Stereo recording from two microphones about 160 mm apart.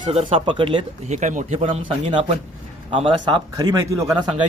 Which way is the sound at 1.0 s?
50° right (ahead or behind).